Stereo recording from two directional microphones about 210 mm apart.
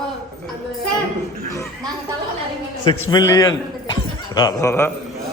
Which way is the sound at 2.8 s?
25° left (ahead or behind).